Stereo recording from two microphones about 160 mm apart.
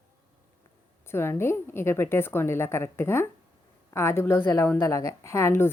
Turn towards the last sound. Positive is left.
turn(degrees=15)  # may be behind; listen again after turning